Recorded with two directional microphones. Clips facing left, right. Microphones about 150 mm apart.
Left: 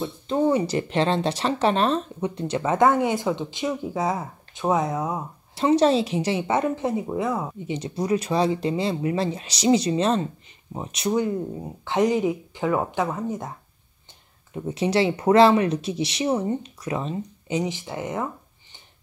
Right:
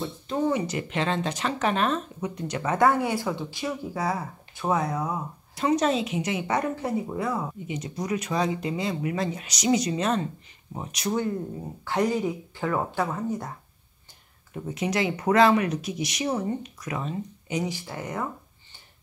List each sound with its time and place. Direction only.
0.0 s speech: 30° left (ahead or behind)
7.7 s speech: 30° left (ahead or behind)
14.5 s speech: 30° left (ahead or behind)